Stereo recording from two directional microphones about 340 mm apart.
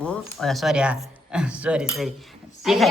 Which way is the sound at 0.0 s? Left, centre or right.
Centre.